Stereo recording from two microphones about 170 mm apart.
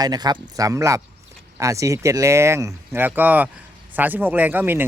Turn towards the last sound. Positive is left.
turn(degrees=-10)  # may be behind; listen again after turning